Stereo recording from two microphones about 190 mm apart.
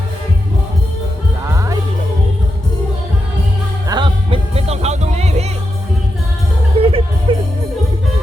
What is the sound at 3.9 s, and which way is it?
Music, 25° right (ahead or behind).